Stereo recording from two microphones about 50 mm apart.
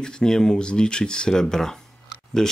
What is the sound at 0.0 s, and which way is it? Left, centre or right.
Speech, centre.